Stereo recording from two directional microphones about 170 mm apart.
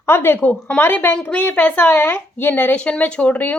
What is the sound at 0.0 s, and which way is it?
A woman's voice, 15° left (ahead or behind).